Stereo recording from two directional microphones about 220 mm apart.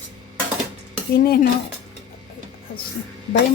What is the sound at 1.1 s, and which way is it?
Speech, 40° left (ahead or behind).